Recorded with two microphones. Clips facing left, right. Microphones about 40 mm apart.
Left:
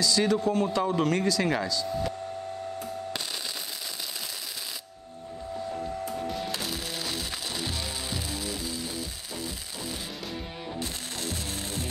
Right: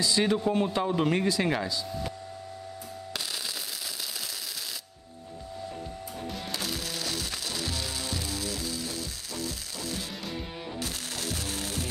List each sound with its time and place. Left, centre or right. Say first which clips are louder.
0.0 s a man's voice: left 1 dB; right
6.3 s music: left 2 dB; centre